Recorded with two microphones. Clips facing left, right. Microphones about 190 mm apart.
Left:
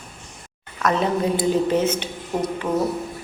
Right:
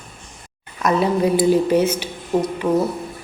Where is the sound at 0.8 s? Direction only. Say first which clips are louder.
Right 3 dB; 10° right (ahead or behind).